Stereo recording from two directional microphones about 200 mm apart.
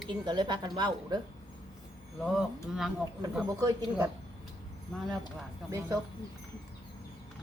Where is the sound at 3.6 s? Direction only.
15° right (ahead or behind).